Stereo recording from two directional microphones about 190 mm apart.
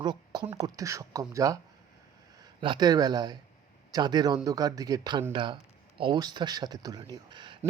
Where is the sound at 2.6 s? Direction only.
25° right (ahead or behind).